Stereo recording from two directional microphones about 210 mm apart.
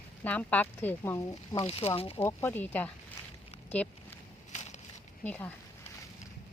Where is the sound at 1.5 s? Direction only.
25° left (ahead or behind).